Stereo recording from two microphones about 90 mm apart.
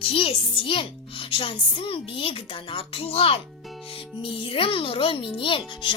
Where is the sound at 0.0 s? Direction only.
85° left.